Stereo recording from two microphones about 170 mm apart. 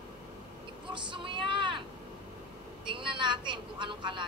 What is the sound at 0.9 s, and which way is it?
Speech, 30° right (ahead or behind).